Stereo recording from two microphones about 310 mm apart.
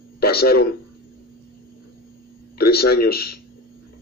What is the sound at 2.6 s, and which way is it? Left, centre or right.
Speech, left.